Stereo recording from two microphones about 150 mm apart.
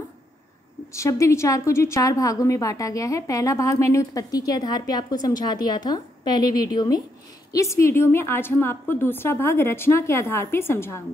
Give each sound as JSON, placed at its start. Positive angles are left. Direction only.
{"t": 0.9, "sound": "a woman's voice", "side_deg": 20}